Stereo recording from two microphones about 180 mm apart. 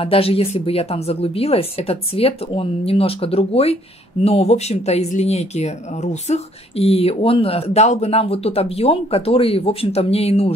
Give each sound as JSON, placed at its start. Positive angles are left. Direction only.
{"t": 0.0, "sound": "speech", "side_deg": 30}